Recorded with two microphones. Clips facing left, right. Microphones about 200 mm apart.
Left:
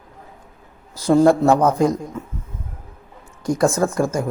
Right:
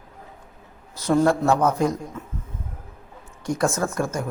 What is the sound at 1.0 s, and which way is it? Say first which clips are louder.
Speech: left 5 dB; 30° left (ahead or behind).